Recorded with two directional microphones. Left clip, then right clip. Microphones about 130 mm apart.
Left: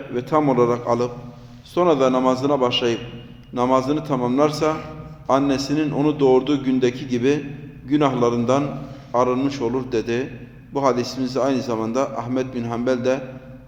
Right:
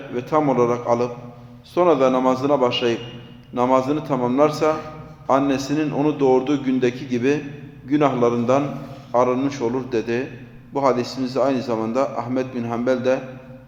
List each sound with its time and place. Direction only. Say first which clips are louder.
0.1 s a man's voice: even; 15° left (ahead or behind)